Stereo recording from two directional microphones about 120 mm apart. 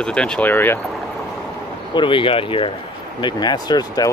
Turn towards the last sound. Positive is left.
turn(degrees=35)  # may be behind; listen again after turning